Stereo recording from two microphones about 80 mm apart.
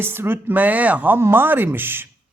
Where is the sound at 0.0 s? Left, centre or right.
Right.